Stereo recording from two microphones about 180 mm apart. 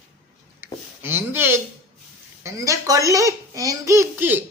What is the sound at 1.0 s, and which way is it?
A child's voice, 10° right (ahead or behind).